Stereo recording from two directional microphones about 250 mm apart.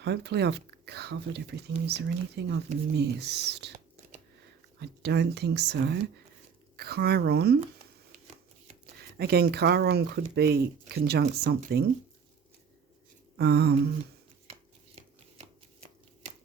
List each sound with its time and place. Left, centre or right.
0.0 s speech: right
4.8 s speech: right
9.1 s speech: right
13.4 s speech: right